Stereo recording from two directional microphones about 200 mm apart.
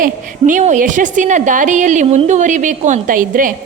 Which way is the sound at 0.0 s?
40° right (ahead or behind).